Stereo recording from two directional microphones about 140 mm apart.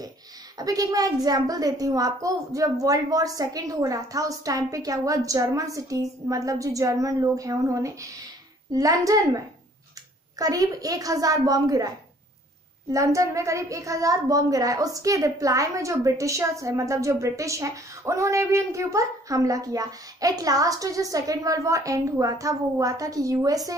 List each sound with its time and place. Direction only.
0.6 s a child's voice: 25° right (ahead or behind)
10.4 s a child's voice: 25° right (ahead or behind)
12.9 s a child's voice: 20° right (ahead or behind)